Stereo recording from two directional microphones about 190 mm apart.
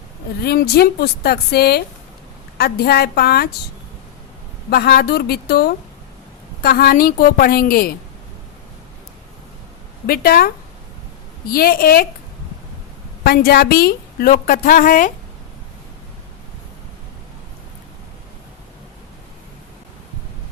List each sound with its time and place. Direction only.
0.4 s speech: 55° left (ahead or behind)
4.7 s a woman's voice: 55° left (ahead or behind)
10.1 s a woman's voice: 55° left (ahead or behind)
11.5 s a woman's voice: 50° left (ahead or behind)
13.2 s a woman's voice: 55° left (ahead or behind)